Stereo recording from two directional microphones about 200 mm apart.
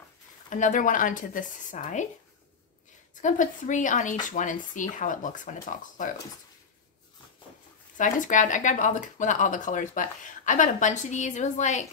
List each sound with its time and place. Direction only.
0.5 s speech: 40° left (ahead or behind)
3.2 s speech: 40° left (ahead or behind)
8.0 s speech: 40° left (ahead or behind)